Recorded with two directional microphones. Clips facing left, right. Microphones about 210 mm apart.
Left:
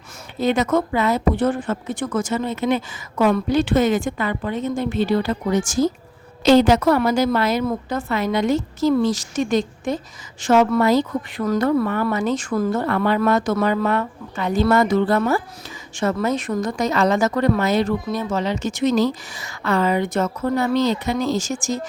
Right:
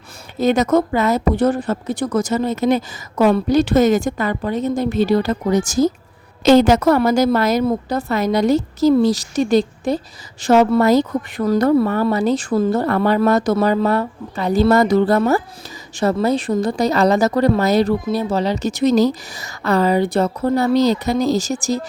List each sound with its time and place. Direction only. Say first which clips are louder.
0.3 s a woman's voice: right 4 dB; 40° right (ahead or behind)